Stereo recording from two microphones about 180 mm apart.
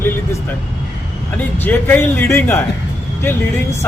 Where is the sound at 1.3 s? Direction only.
10° left (ahead or behind).